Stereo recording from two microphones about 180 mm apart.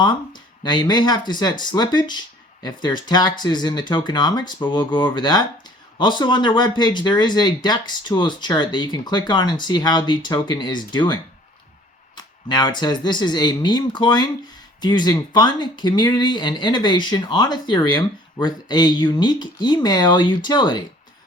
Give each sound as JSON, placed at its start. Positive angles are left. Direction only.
{"t": 0.0, "sound": "speech", "side_deg": 25}